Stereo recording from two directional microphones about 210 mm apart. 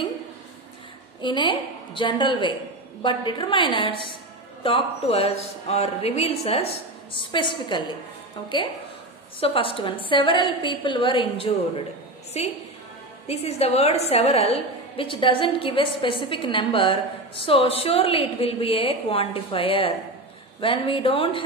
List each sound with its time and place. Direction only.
1.2 s a woman's voice: 20° left (ahead or behind)
9.4 s a woman's voice: 25° left (ahead or behind)